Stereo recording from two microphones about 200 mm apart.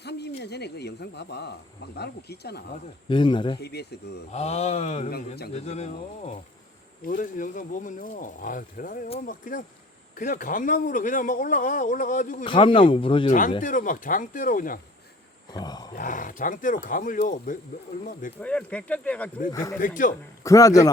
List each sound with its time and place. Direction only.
0.0 s speech: 55° left (ahead or behind)
3.1 s speech: 25° left (ahead or behind)
3.6 s speech: 55° left (ahead or behind)
4.3 s speech: 35° left (ahead or behind)
12.5 s speech: 25° left (ahead or behind)
13.6 s speech: 40° left (ahead or behind)
15.5 s a sound: 20° left (ahead or behind)
16.0 s speech: 40° left (ahead or behind)
18.3 s speech: 5° left (ahead or behind)
19.8 s speech: 40° left (ahead or behind)
20.4 s a man's voice: 15° left (ahead or behind)